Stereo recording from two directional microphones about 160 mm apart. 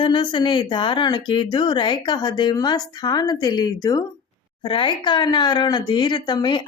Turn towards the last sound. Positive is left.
turn(degrees=30)  # may be behind; listen again after turning